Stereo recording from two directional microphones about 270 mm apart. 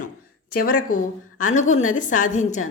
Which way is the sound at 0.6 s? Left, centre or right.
Left.